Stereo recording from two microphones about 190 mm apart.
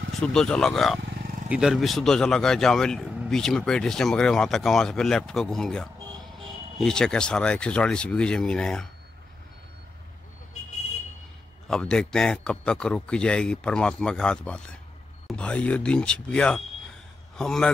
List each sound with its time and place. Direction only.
0.2 s speech: 5° left (ahead or behind)
1.0 s vehicle: 60° right (ahead or behind)
1.5 s speech: centre (ahead or behind)
11.7 s speech: 5° left (ahead or behind)